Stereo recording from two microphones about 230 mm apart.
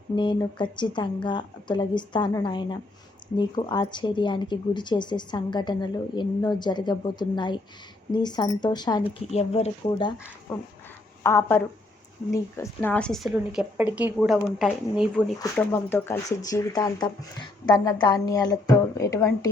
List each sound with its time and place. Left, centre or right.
0.2 s speech: left
11.2 s a woman's voice: centre